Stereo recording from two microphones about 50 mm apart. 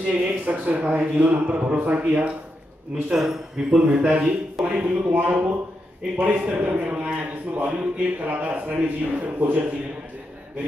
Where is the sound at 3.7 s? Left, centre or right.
Right.